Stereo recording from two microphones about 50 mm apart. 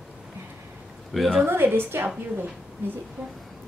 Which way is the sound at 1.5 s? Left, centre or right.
Right.